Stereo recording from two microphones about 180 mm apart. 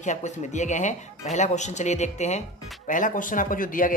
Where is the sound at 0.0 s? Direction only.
40° left (ahead or behind).